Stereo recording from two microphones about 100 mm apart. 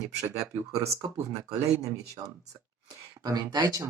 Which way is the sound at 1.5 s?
35° right (ahead or behind).